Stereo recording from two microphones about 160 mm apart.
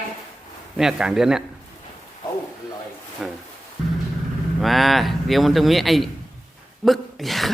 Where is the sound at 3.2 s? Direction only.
5° right (ahead or behind).